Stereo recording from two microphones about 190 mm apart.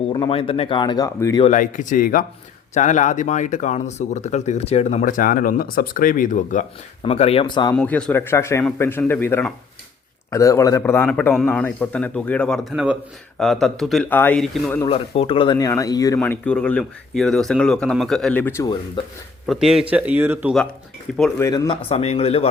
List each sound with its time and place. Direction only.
0.1 s speech: 30° left (ahead or behind)
1.5 s speech: 45° left (ahead or behind)
7.0 s speech: 30° left (ahead or behind)
7.8 s speech: 5° left (ahead or behind)
14.8 s speech: 30° left (ahead or behind)
19.5 s speech: 5° right (ahead or behind)
21.1 s speech: 5° left (ahead or behind)
21.4 s speech: 20° left (ahead or behind)
21.8 s speech: 35° left (ahead or behind)